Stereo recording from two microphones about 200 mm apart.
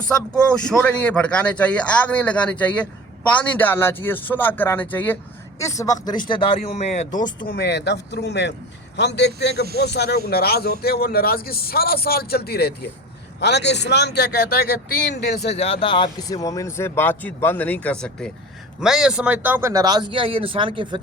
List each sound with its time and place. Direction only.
0.2 s speech: 5° left (ahead or behind); by 7.1 s 35° left (ahead or behind)
7.1 s speech: 20° left (ahead or behind)
7.4 s a man's voice: 55° left (ahead or behind)
15.5 s a man's voice: 30° left (ahead or behind); by 21.0 s 25° right (ahead or behind)